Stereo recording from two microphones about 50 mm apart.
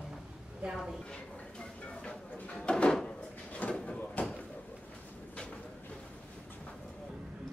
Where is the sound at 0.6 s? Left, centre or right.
Right.